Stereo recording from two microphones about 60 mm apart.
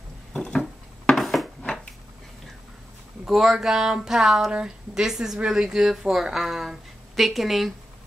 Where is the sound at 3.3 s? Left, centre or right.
Centre.